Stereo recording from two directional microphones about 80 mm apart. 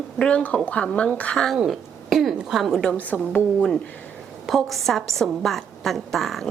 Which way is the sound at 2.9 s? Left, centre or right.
Centre.